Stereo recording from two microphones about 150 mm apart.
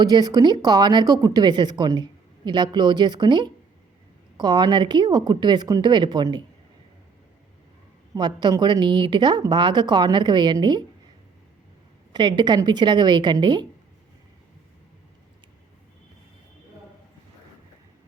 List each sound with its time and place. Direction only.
0.0 s speech: 25° right (ahead or behind)
8.1 s speech: 30° right (ahead or behind)
12.1 s speech: 30° right (ahead or behind)